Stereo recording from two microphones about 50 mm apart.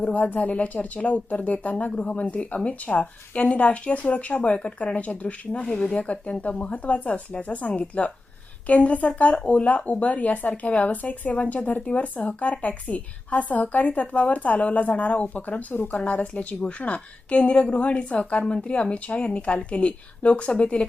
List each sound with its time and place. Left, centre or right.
0.0 s a woman's voice: left
5.6 s speech: centre
6.0 s a woman's voice: left
16.0 s a woman's voice: left